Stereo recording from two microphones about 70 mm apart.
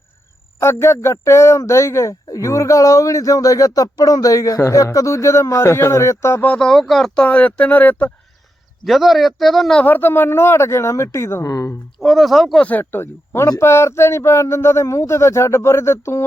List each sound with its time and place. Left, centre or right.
0.6 s a man's voice: left
6.6 s speech: centre
7.2 s speech: centre
8.8 s speech: centre
9.8 s speech: left
11.4 s a man's voice: left
11.9 s speech: centre
12.5 s speech: left
12.8 s speech: left